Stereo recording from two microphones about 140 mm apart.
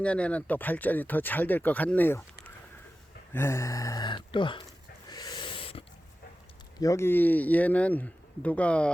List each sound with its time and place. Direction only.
0.0 s speech: 10° left (ahead or behind); by 4.6 s 35° left (ahead or behind)
5.0 s a sound: 30° left (ahead or behind)
6.7 s speech: 20° left (ahead or behind)